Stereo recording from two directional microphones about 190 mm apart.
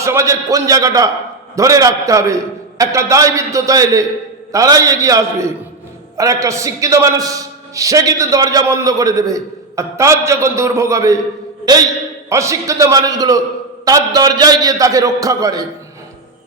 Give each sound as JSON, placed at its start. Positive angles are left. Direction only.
{"t": 0.0, "sound": "a man's voice", "side_deg": -15}